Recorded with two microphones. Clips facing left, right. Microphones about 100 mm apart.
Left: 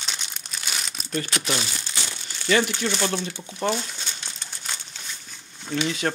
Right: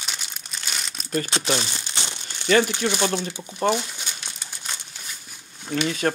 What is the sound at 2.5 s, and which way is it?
Speech, 45° right (ahead or behind).